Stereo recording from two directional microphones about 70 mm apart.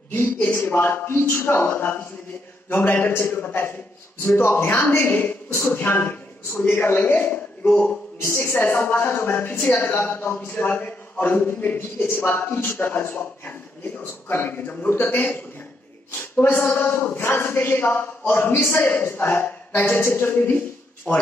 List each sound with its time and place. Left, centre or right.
0.1 s speech: left
4.9 s a man's voice: left
5.5 s a man's voice: left; by 8.0 s centre
8.2 s a man's voice: left